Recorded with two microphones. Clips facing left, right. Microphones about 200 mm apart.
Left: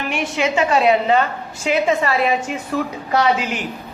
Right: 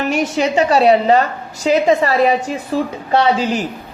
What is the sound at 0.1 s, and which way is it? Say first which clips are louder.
A woman's voice: right 1 dB; 40° right (ahead or behind).